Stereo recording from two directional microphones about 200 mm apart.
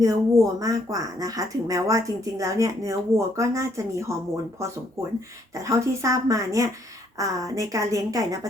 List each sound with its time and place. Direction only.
0.0 s speech: 15° right (ahead or behind)
5.5 s speech: 15° right (ahead or behind)